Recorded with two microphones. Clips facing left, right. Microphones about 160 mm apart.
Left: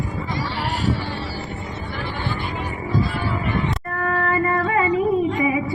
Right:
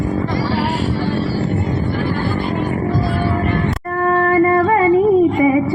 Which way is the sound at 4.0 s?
35° right (ahead or behind).